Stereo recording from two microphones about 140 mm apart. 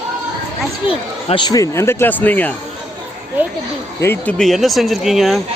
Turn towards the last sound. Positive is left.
turn(degrees=0)  # may be behind; listen again after turning